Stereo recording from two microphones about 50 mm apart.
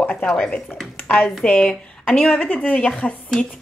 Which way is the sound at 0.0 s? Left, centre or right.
Left.